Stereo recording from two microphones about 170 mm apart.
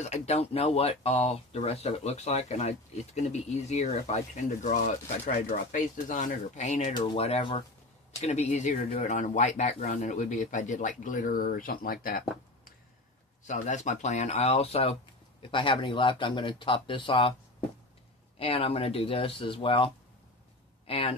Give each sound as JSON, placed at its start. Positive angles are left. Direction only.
{"t": 0.0, "sound": "speech", "side_deg": 40}
{"t": 13.5, "sound": "speech", "side_deg": 45}
{"t": 18.4, "sound": "speech", "side_deg": 35}